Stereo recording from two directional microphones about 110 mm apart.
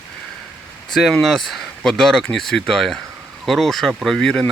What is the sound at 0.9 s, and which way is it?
Speech, centre (ahead or behind).